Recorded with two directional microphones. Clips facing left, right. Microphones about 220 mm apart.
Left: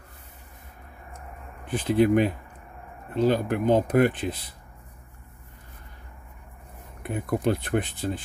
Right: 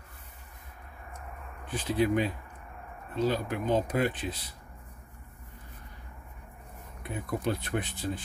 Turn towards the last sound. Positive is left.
turn(degrees=60)  # may be behind; listen again after turning